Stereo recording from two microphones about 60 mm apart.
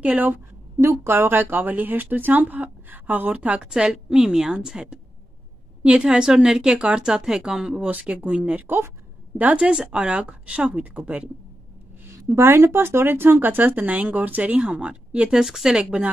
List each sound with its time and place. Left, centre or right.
0.0 s speech: right
0.7 s a woman's voice: right
1.1 s speech: right; by 7.8 s centre
7.8 s speech: right
12.3 s speech: right; by 16.1 s centre